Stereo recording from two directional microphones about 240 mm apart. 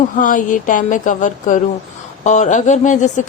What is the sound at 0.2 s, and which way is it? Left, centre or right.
A woman's voice, left.